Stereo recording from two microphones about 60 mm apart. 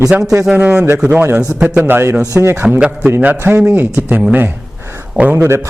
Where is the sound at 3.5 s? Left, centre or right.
Right.